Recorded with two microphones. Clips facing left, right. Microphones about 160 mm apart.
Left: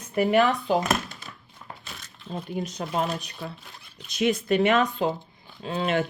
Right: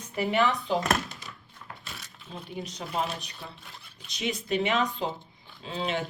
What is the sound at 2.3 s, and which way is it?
Speech, 55° left (ahead or behind).